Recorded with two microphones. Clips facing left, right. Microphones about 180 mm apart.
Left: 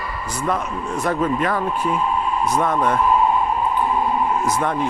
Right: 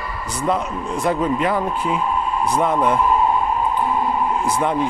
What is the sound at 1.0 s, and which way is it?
Speech, 15° right (ahead or behind).